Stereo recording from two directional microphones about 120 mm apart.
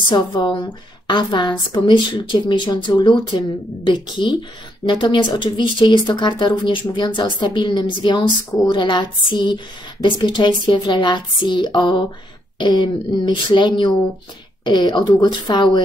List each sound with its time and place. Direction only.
0.1 s a woman's voice: 35° left (ahead or behind)